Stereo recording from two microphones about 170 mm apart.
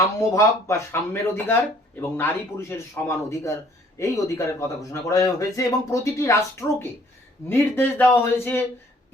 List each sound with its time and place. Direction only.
0.3 s speech: 15° left (ahead or behind)